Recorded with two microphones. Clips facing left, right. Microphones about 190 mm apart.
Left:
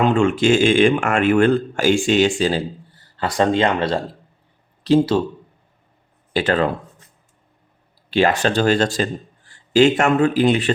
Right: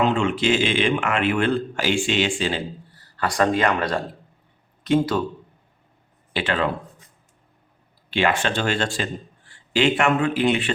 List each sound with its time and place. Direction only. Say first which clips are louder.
0.0 s a man's voice: left 4 dB; 50° left (ahead or behind)
3.2 s speech: left 3 dB; 25° left (ahead or behind)
6.3 s speech: left 5 dB; 40° left (ahead or behind)
8.1 s speech: left 5 dB; 40° left (ahead or behind)